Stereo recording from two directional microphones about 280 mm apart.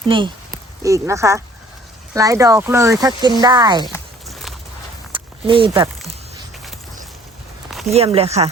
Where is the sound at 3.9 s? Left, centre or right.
Centre.